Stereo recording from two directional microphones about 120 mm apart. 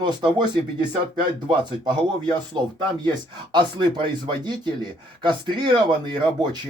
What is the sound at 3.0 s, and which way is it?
Speech, 40° right (ahead or behind).